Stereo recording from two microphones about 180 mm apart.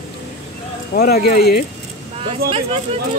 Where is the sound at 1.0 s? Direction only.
55° left (ahead or behind).